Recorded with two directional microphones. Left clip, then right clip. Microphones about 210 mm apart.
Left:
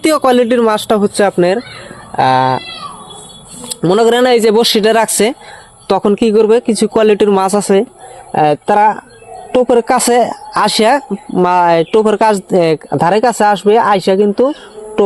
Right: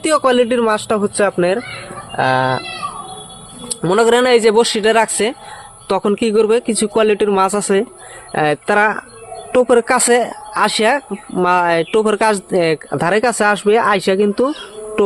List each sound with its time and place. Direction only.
0.0 s speech: 35° left (ahead or behind)
3.7 s speech: 30° left (ahead or behind)